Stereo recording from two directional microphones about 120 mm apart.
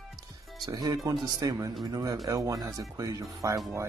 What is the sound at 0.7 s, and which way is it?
Speech, 30° right (ahead or behind).